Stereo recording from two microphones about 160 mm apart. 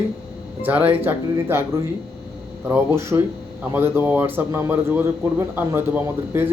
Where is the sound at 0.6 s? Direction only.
10° right (ahead or behind).